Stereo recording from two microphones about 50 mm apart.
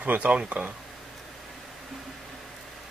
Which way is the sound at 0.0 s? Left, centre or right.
Right.